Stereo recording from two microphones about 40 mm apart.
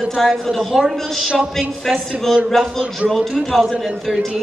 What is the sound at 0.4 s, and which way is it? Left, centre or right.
A woman's voice, centre.